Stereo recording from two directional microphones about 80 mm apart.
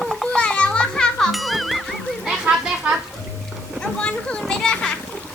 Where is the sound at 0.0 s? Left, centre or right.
Centre.